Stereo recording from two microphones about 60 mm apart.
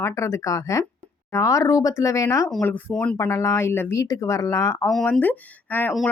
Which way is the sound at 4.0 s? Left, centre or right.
Left.